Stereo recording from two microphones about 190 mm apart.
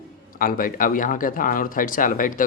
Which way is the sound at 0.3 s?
50° left (ahead or behind).